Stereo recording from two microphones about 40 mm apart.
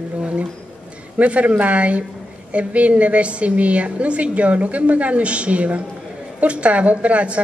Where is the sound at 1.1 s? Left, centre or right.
Right.